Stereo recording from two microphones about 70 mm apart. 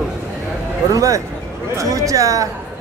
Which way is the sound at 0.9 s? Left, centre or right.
Right.